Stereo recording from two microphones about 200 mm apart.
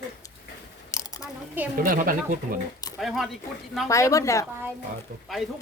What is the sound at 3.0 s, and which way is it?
Speech, centre (ahead or behind).